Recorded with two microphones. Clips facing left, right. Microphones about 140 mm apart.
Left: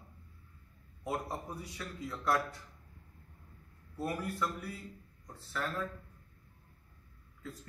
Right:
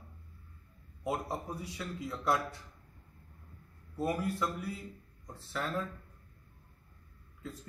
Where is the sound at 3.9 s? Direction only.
15° right (ahead or behind).